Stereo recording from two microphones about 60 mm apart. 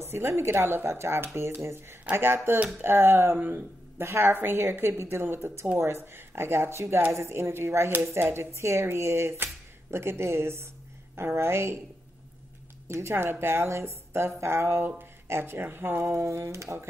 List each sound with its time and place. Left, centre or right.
0.0 s a woman's voice: right
12.8 s speech: right